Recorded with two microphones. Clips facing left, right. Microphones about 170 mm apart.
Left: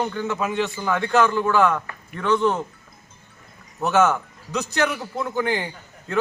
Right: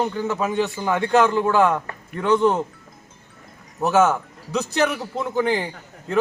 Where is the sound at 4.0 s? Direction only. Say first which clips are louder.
Even; 10° right (ahead or behind).